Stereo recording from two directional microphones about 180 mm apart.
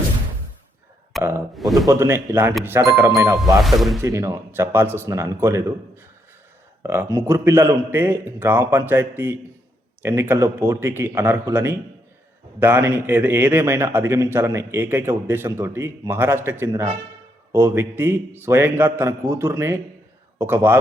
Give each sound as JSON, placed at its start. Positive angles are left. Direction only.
{"t": 1.1, "sound": "a sound", "side_deg": 0}
{"t": 1.9, "sound": "a man's voice", "side_deg": -15}
{"t": 3.6, "sound": "speech", "side_deg": 0}
{"t": 4.0, "sound": "a man's voice", "side_deg": -15}